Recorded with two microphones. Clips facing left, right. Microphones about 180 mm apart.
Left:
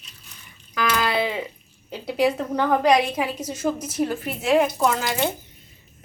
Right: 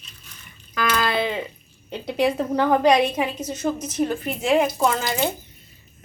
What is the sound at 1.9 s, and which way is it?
A woman's voice, 5° left (ahead or behind).